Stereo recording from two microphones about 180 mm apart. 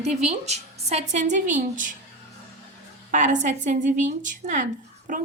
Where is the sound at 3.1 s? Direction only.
45° right (ahead or behind).